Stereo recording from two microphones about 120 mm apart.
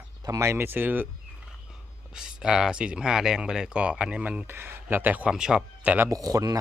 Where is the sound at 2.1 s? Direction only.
5° right (ahead or behind).